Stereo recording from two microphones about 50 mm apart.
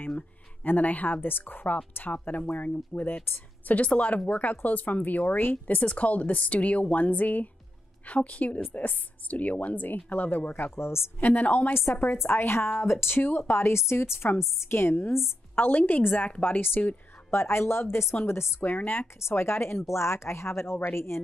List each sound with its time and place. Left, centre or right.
0.7 s a woman's voice: left
10.6 s speech: left
11.1 s speech: left
11.7 s speech: left
15.5 s speech: left
17.3 s speech: left